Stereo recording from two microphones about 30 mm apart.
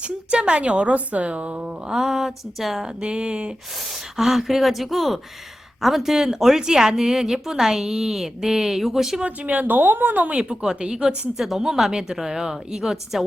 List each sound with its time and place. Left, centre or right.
0.0 s a woman's voice: right
1.6 s a woman's voice: centre
2.8 s a woman's voice: right
4.2 s a woman's voice: centre
9.2 s a woman's voice: right
9.6 s a woman's voice: right
10.5 s speech: right
11.3 s a woman's voice: centre